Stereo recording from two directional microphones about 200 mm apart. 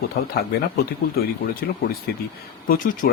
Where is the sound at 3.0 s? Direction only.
45° left (ahead or behind).